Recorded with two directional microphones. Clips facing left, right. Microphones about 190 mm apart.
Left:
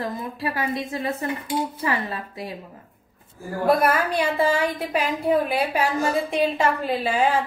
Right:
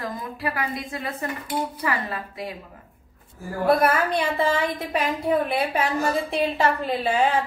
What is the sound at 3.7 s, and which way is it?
A woman's voice, 10° left (ahead or behind).